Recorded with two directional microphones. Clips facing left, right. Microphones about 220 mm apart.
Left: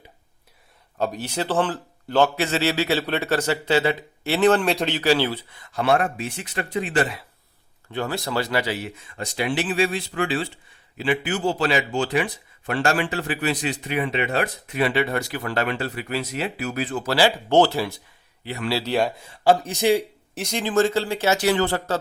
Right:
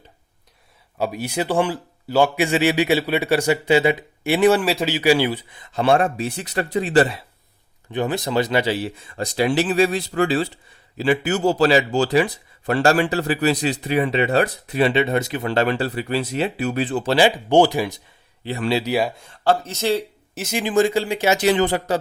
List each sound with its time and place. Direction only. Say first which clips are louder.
0.9 s a man's voice: right 2 dB; 10° right (ahead or behind); by 7.3 s 35° right (ahead or behind)
7.9 s speech: right 4 dB; 20° right (ahead or behind)
18.4 s speech: right 4 dB; 30° right (ahead or behind)
18.8 s speech: right 1 dB; 10° right (ahead or behind); by 20.1 s 15° left (ahead or behind)
20.3 s a man's voice: right 2 dB; 5° right (ahead or behind)